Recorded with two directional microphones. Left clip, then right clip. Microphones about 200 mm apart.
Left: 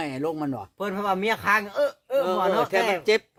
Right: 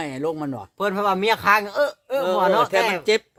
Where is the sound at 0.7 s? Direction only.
50° right (ahead or behind).